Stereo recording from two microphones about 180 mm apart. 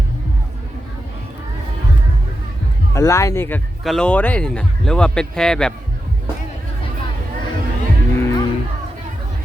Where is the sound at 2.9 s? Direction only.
15° left (ahead or behind).